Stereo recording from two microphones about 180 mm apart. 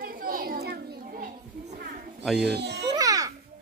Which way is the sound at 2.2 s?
Centre (ahead or behind).